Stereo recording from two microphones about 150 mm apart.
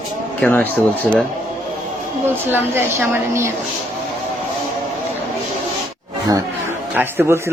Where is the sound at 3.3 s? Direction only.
20° right (ahead or behind).